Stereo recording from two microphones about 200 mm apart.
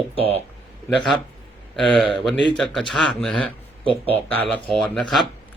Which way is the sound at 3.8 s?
30° right (ahead or behind).